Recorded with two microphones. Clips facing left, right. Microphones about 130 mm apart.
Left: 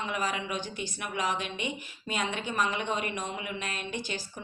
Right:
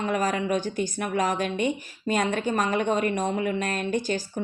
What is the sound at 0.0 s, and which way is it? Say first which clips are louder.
A woman's voice: right 7 dB; 45° right (ahead or behind).